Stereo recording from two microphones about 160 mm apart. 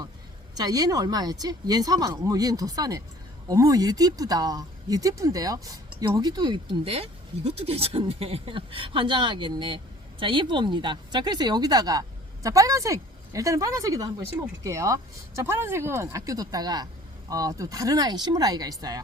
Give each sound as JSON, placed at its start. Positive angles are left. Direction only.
{"t": 0.5, "sound": "speech", "side_deg": -25}